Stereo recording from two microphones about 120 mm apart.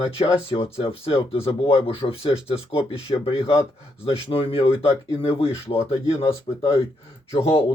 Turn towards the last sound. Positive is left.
turn(degrees=55)  # may be behind; listen again after turning